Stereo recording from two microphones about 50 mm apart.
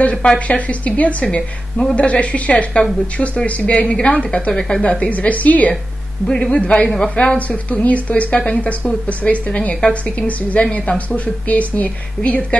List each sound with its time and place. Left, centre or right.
0.0 s a woman's voice: left
6.2 s a woman's voice: centre
6.5 s a woman's voice: left
9.8 s a woman's voice: centre
10.2 s a woman's voice: left